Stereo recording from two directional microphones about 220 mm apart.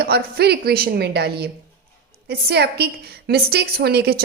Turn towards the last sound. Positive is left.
turn(degrees=-45)  # may be behind; listen again after turning